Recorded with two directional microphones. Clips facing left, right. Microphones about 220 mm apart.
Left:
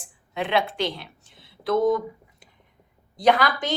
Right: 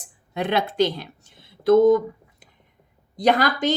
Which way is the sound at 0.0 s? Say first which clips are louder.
Right 3 dB; 40° right (ahead or behind).